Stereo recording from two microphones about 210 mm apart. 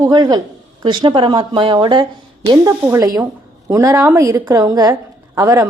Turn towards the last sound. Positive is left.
turn(degrees=-15)  # may be behind; listen again after turning